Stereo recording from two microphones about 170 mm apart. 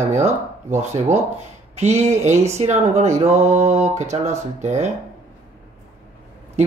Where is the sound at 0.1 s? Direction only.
40° right (ahead or behind).